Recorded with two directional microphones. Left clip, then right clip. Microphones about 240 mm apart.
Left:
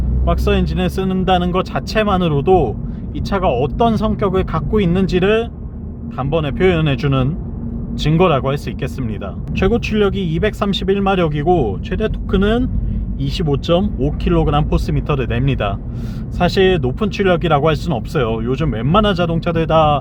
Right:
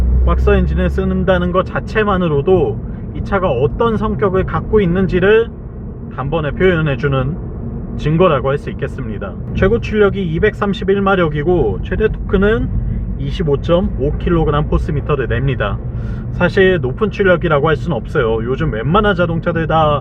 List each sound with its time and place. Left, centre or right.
0.3 s speech: left